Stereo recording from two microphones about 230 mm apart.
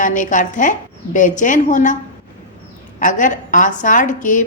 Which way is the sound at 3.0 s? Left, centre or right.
Left.